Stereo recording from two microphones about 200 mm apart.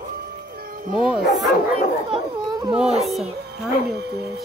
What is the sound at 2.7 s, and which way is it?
Speech, centre (ahead or behind).